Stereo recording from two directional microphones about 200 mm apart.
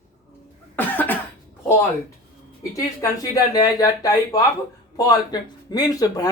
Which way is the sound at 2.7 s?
15° left (ahead or behind).